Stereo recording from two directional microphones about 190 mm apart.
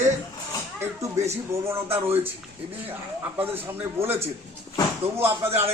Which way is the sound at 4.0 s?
15° right (ahead or behind).